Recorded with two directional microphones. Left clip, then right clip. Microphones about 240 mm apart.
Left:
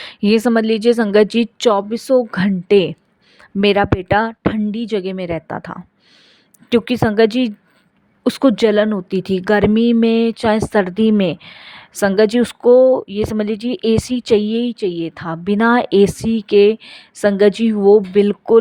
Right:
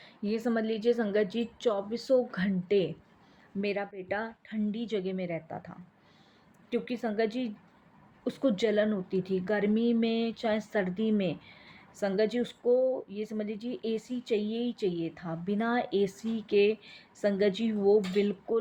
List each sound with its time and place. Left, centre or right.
0.0 s a woman's voice: left